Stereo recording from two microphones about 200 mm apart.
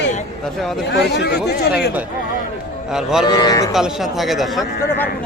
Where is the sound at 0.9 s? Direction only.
60° left (ahead or behind).